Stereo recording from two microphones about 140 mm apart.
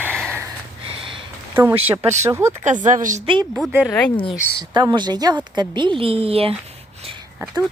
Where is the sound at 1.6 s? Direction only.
15° right (ahead or behind).